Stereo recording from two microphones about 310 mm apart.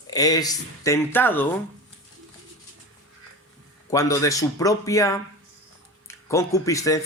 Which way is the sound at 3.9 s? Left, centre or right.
Centre.